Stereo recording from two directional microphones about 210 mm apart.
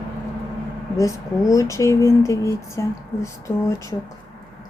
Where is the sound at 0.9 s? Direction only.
15° left (ahead or behind).